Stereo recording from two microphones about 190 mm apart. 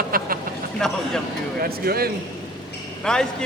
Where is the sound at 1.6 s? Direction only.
55° right (ahead or behind).